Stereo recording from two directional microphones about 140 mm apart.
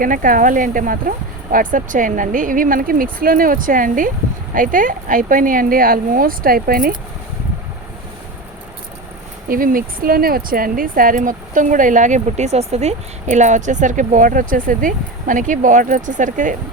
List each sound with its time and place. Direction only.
0.0 s speech: 75° right (ahead or behind)
9.5 s speech: 85° right; by 16.6 s 65° right (ahead or behind)